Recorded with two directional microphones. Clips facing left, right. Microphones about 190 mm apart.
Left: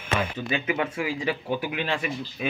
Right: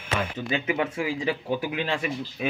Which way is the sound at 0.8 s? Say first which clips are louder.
Right 1 dB; 20° right (ahead or behind).